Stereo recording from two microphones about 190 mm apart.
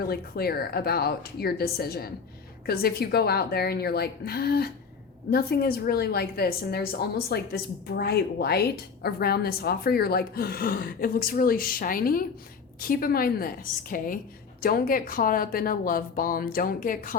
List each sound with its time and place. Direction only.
0.1 s a woman's voice: 55° left (ahead or behind)